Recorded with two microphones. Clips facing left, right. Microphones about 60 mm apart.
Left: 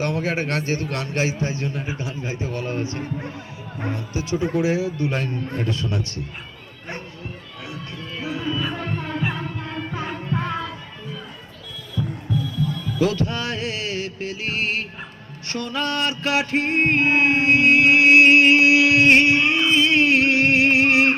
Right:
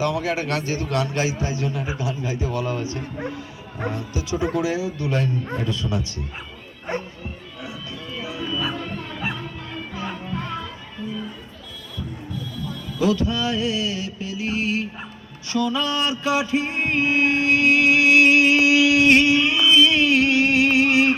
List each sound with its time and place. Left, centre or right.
0.0 s a man's voice: left
5.5 s speech: left
8.2 s a sound: left
13.0 s music: left